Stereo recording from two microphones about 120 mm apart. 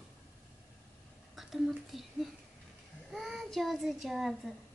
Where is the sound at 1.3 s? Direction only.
Centre (ahead or behind).